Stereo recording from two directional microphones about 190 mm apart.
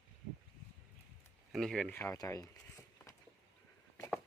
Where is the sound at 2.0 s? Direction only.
15° left (ahead or behind).